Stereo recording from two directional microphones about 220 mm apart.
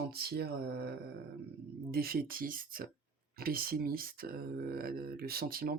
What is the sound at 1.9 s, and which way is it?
Speech, 45° right (ahead or behind).